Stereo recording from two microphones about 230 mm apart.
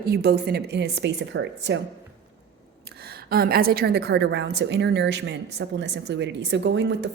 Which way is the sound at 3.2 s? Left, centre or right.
Right.